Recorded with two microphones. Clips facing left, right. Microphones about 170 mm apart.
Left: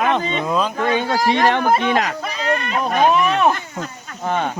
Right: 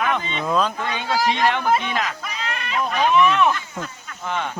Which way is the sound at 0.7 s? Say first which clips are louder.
Left 5 dB; 50° left (ahead or behind).